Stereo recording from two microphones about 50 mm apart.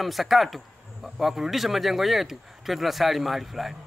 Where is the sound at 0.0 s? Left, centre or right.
Centre.